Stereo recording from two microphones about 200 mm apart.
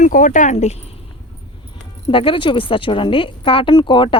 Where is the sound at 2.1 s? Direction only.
25° left (ahead or behind).